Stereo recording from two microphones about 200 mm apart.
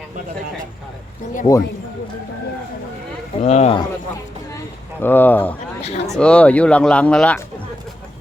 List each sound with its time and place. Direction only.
1.5 s a man's voice: 25° left (ahead or behind)
3.4 s speech: 35° left (ahead or behind)
4.9 s speech: 10° left (ahead or behind)
5.8 s a sound: 30° left (ahead or behind)
6.1 s speech: 5° left (ahead or behind)